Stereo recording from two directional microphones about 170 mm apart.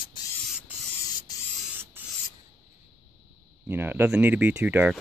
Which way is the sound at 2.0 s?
10° right (ahead or behind).